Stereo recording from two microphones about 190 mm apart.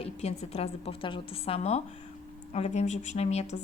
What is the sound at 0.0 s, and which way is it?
Speech, 35° left (ahead or behind).